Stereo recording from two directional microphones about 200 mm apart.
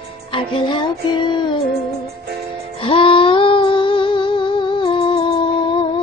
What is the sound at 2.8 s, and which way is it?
Music, 25° left (ahead or behind).